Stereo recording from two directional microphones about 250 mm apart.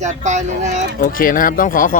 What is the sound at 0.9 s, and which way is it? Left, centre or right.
Speech, left.